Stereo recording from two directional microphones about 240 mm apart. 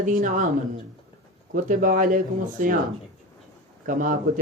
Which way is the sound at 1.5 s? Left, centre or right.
Right.